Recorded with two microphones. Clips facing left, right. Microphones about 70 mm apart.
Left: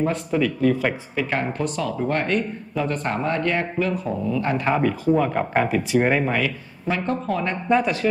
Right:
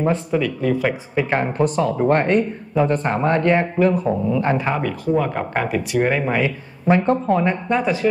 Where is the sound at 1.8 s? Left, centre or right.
Right.